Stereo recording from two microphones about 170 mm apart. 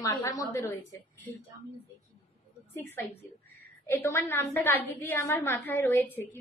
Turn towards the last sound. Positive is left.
turn(degrees=10)  # may be behind; listen again after turning